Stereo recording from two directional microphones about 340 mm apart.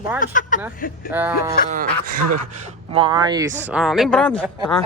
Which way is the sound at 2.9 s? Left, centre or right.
Centre.